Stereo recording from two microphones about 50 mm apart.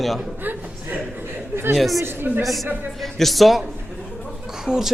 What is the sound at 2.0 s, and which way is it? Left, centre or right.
Speech, right.